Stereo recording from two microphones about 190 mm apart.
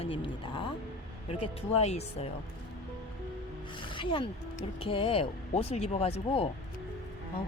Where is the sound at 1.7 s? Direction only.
35° left (ahead or behind).